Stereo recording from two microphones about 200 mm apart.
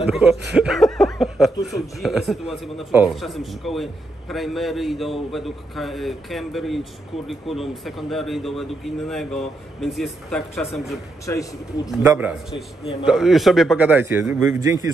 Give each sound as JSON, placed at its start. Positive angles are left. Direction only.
{"t": 0.1, "sound": "a man's voice", "side_deg": 0}
{"t": 11.2, "sound": "speech", "side_deg": 15}
{"t": 11.9, "sound": "a man's voice", "side_deg": -5}